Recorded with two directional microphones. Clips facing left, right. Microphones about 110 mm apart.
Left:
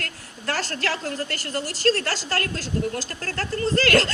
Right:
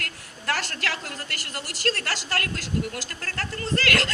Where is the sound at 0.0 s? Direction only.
35° left (ahead or behind).